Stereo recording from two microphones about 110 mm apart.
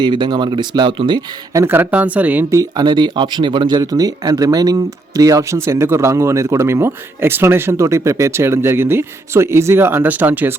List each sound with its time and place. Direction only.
0.0 s speech: 40° right (ahead or behind)
1.5 s speech: 20° right (ahead or behind)
2.5 s speech: 35° right (ahead or behind); by 10.5 s 15° right (ahead or behind)